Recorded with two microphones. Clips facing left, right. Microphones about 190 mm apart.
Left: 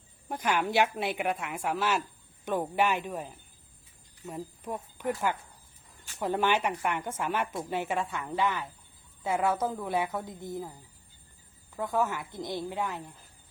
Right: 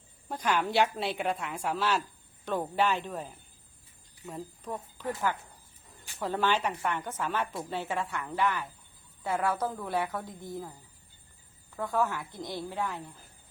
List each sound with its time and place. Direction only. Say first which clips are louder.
0.3 s a woman's voice: even; 10° left (ahead or behind)
4.3 s a woman's voice: left 1 dB; 15° left (ahead or behind)
11.8 s a woman's voice: even; 15° left (ahead or behind)